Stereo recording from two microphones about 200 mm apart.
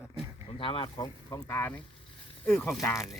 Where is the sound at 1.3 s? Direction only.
10° left (ahead or behind).